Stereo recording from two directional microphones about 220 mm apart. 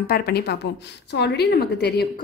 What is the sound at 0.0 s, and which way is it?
A woman's voice, 45° left (ahead or behind).